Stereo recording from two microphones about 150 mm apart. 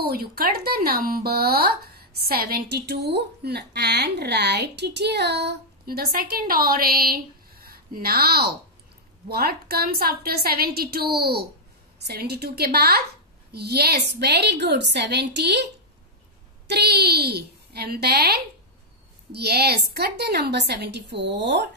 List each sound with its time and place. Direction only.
0.0 s a woman's voice: 90° right
16.7 s a woman's voice: 90° right